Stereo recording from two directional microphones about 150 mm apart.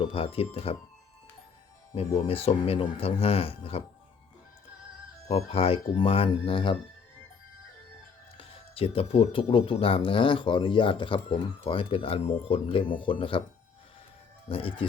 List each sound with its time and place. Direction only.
0.0 s speech: 40° left (ahead or behind)
2.0 s speech: 40° left (ahead or behind)
5.3 s speech: 40° left (ahead or behind)
8.4 s speech: 40° left (ahead or behind)
14.5 s speech: 40° left (ahead or behind)